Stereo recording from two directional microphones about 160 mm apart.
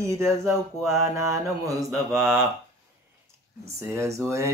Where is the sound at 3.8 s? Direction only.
20° right (ahead or behind).